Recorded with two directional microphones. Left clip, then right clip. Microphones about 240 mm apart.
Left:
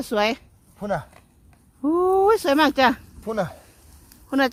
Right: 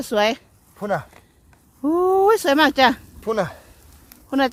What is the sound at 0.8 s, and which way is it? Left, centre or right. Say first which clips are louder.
Speech: right 3 dB; centre.